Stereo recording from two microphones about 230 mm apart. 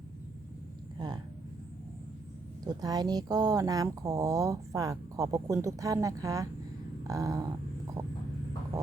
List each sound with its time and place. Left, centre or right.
0.9 s speech: centre
2.6 s speech: centre